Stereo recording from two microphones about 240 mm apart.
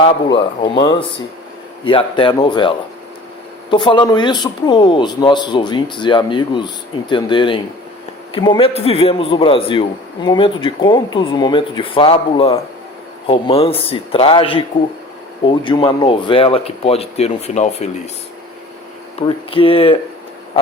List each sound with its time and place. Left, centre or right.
0.3 s speech: left
19.2 s speech: left